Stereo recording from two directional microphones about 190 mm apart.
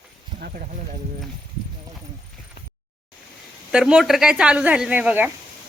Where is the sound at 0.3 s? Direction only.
50° right (ahead or behind).